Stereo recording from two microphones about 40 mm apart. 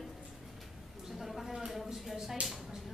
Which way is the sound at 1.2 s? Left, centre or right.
Centre.